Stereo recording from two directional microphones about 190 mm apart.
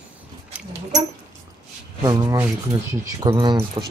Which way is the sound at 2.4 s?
20° right (ahead or behind).